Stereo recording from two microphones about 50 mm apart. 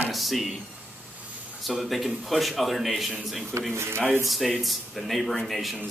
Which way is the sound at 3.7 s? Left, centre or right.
Right.